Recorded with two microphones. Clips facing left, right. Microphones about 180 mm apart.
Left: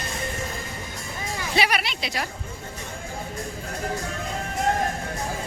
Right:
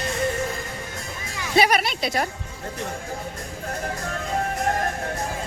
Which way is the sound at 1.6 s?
45° right (ahead or behind).